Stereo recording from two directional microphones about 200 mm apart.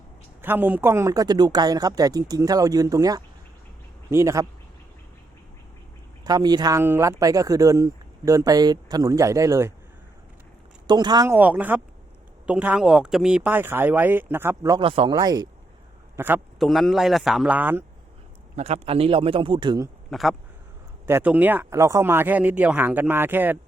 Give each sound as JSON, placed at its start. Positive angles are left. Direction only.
{"t": 0.4, "sound": "speech", "side_deg": -10}
{"t": 6.2, "sound": "speech", "side_deg": -20}
{"t": 10.8, "sound": "a man's voice", "side_deg": -20}
{"t": 11.3, "sound": "speech", "side_deg": -10}
{"t": 14.8, "sound": "a man's voice", "side_deg": -25}
{"t": 16.6, "sound": "a man's voice", "side_deg": 0}
{"t": 18.5, "sound": "a man's voice", "side_deg": -30}
{"t": 20.1, "sound": "speech", "side_deg": 0}